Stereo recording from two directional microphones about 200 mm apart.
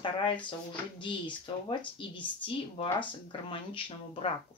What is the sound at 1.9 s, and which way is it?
Speech, 25° left (ahead or behind).